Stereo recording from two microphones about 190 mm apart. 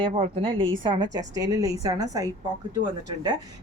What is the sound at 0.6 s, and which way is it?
Speech, 90° right.